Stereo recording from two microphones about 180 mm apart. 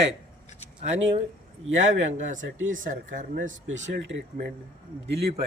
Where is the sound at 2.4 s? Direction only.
90° right.